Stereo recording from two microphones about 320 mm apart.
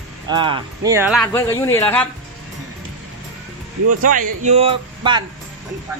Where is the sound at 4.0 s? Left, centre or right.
Right.